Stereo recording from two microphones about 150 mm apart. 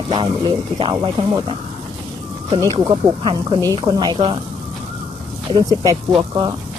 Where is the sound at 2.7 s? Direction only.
35° right (ahead or behind).